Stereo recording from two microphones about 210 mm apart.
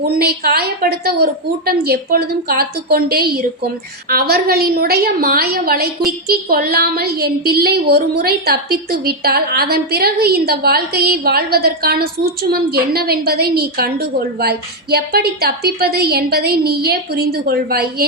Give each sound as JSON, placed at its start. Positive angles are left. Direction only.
{"t": 0.0, "sound": "a woman's voice", "side_deg": -45}